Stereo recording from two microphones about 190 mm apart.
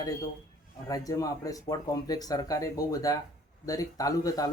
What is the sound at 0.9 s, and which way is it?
A man's voice, 20° left (ahead or behind).